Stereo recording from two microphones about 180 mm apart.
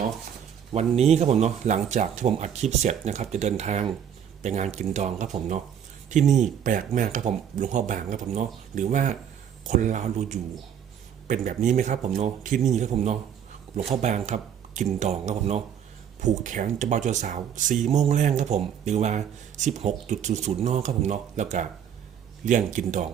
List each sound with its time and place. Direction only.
0.7 s speech: 35° right (ahead or behind)